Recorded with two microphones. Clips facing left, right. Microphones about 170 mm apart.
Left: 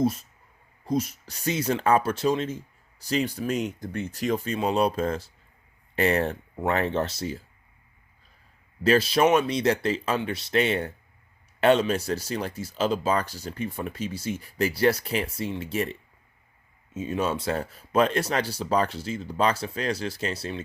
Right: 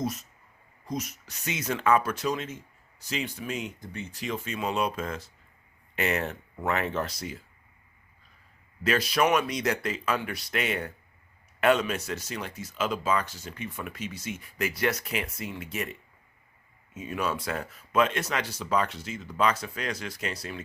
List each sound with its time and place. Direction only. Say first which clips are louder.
0.0 s speech: left 7 dB; 30° left (ahead or behind)
8.8 s speech: left 5 dB; 30° left (ahead or behind)